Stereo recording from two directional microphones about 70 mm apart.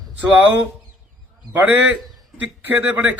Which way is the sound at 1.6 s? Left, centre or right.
Centre.